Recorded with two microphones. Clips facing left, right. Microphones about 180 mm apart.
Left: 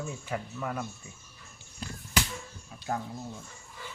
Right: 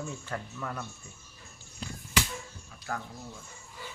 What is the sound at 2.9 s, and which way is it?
Speech, 25° left (ahead or behind).